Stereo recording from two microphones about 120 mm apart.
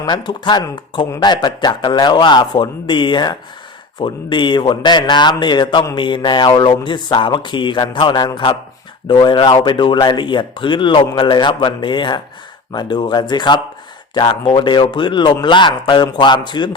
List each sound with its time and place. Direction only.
0.0 s speech: 40° left (ahead or behind)